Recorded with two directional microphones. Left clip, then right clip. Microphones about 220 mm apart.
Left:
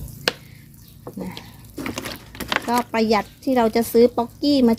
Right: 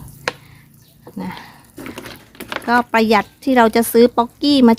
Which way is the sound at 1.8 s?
Centre (ahead or behind).